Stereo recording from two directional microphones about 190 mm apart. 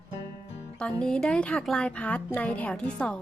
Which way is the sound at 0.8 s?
5° left (ahead or behind).